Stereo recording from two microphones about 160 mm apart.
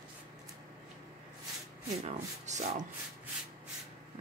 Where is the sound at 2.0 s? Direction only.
50° right (ahead or behind).